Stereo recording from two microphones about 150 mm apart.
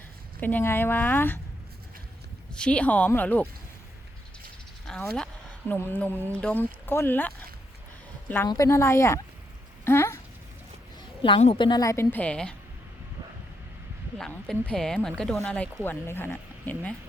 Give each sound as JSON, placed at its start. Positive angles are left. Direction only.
{"t": 0.3, "sound": "speech", "side_deg": 10}
{"t": 2.6, "sound": "speech", "side_deg": 5}
{"t": 4.9, "sound": "speech", "side_deg": 5}
{"t": 8.4, "sound": "speech", "side_deg": 20}
{"t": 11.2, "sound": "a woman's voice", "side_deg": 40}
{"t": 11.6, "sound": "speech", "side_deg": 25}
{"t": 14.2, "sound": "a woman's voice", "side_deg": 5}